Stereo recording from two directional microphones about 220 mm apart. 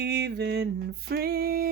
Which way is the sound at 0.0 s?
50° right (ahead or behind).